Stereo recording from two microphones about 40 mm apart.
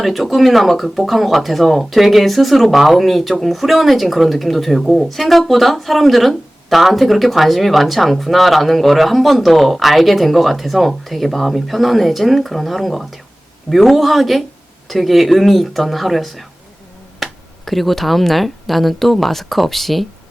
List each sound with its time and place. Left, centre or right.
0.0 s speech: centre